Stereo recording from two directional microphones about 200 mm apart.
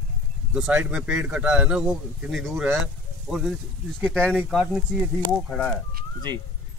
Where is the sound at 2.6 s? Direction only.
10° right (ahead or behind).